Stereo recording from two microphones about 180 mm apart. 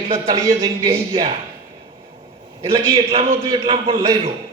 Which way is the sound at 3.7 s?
20° right (ahead or behind).